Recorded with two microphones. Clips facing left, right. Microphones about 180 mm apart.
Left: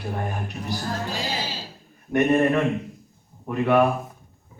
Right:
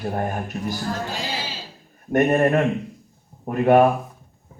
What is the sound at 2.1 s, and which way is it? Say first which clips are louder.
A man's voice: right 2 dB; 45° right (ahead or behind).